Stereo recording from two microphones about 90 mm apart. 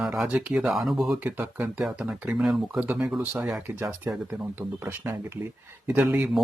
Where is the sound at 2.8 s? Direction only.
15° right (ahead or behind).